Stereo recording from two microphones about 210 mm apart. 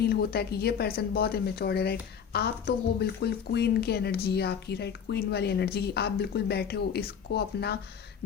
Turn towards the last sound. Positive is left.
turn(degrees=50)  # may be behind; listen again after turning